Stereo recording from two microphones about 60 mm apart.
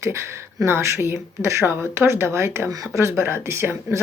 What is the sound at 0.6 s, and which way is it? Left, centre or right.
Speech, right.